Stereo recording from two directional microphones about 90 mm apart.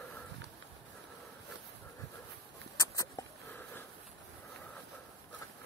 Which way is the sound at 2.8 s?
40° left (ahead or behind).